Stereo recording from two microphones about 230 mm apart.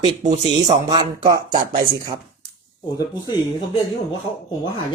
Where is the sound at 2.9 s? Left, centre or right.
Centre.